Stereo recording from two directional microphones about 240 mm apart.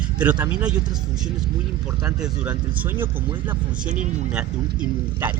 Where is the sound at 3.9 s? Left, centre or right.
Right.